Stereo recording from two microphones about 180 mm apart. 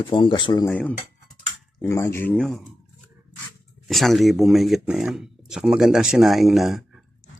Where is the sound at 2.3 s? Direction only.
Centre (ahead or behind).